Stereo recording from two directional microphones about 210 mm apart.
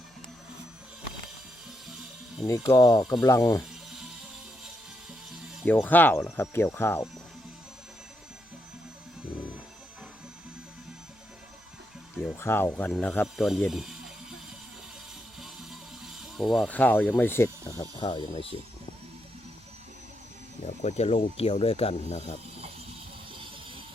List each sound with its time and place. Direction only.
2.5 s speech: 15° left (ahead or behind)
5.6 s speech: 10° left (ahead or behind)
12.1 s speech: 10° left (ahead or behind)
16.4 s speech: centre (ahead or behind); by 18.4 s 25° left (ahead or behind)
20.8 s speech: 30° left (ahead or behind)